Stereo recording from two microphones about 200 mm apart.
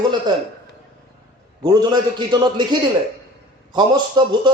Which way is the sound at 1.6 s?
20° right (ahead or behind).